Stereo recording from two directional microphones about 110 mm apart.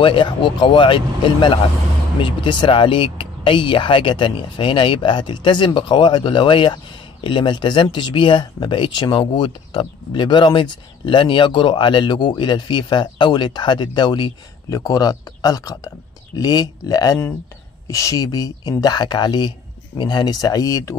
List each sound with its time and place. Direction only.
0.0 s speech: 50° left (ahead or behind); by 20.9 s 35° left (ahead or behind)